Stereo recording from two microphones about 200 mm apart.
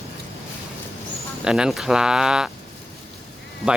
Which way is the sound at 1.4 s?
5° right (ahead or behind).